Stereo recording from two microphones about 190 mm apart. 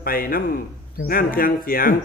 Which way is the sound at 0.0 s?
50° left (ahead or behind).